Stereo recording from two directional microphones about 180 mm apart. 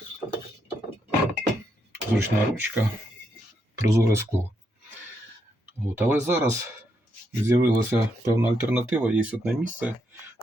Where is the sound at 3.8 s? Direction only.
15° right (ahead or behind).